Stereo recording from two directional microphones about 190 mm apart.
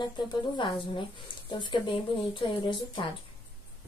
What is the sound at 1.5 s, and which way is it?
A woman's voice, 25° left (ahead or behind).